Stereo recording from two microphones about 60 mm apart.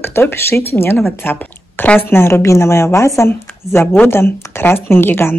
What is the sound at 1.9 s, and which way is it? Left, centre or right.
Speech, left.